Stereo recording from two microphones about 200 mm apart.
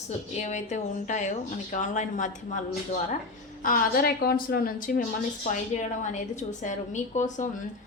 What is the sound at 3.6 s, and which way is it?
A woman's voice, 45° left (ahead or behind).